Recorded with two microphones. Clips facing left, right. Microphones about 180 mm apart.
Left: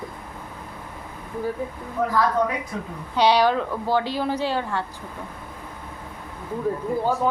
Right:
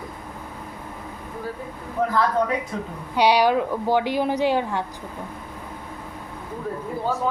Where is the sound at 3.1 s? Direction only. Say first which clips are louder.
Right 1 dB; 10° right (ahead or behind).